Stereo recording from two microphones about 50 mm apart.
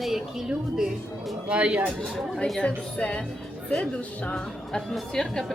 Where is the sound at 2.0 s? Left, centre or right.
Centre.